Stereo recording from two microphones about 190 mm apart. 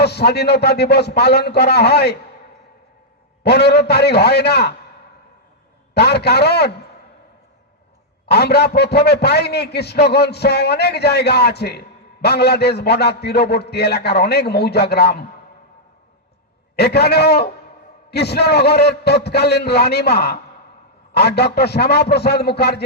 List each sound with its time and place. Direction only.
0.0 s a man's voice: 60° left (ahead or behind)
3.4 s a man's voice: 60° left (ahead or behind)
5.9 s a man's voice: 60° left (ahead or behind)
8.3 s a man's voice: 60° left (ahead or behind)
16.7 s a man's voice: 60° left (ahead or behind)